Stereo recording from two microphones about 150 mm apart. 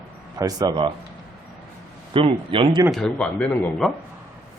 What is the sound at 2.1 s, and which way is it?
Speech, 35° right (ahead or behind).